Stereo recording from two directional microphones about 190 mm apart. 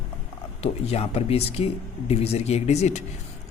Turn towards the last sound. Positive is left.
turn(degrees=35)  # may be behind; listen again after turning